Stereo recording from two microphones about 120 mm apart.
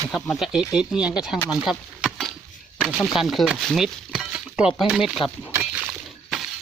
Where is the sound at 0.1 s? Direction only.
Centre (ahead or behind).